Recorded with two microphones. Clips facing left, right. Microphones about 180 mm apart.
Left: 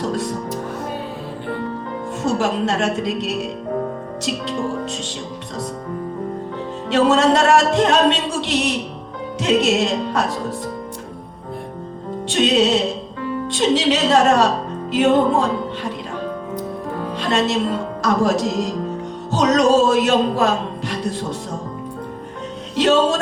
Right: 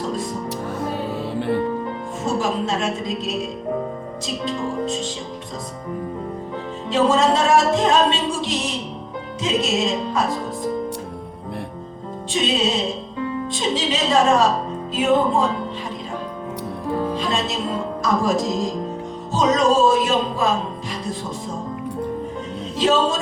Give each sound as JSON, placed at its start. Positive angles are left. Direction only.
{"t": 0.0, "sound": "music", "side_deg": 70}
{"t": 2.2, "sound": "music", "side_deg": 70}
{"t": 6.9, "sound": "music", "side_deg": 75}
{"t": 12.3, "sound": "music", "side_deg": 75}
{"t": 17.2, "sound": "speech", "side_deg": 75}
{"t": 22.7, "sound": "music", "side_deg": 75}